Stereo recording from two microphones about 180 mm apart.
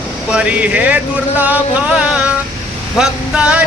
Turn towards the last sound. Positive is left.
turn(degrees=-5)  # may be behind; listen again after turning